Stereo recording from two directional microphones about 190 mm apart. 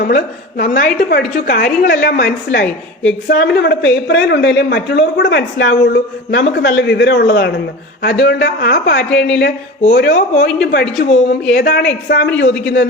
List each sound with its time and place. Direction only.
0.0 s a woman's voice: 50° left (ahead or behind)
2.6 s speech: 5° left (ahead or behind)
3.2 s speech: 60° left (ahead or behind)
9.0 s speech: 5° left (ahead or behind)
9.9 s speech: 70° left (ahead or behind)
10.6 s a woman's voice: 50° left (ahead or behind)
10.9 s speech: 35° left (ahead or behind)
11.5 s speech: 55° left (ahead or behind)